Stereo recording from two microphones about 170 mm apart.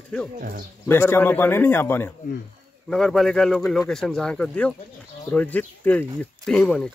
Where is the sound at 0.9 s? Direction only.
15° left (ahead or behind).